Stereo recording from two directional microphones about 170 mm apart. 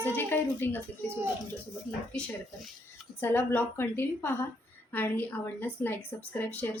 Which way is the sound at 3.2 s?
15° left (ahead or behind).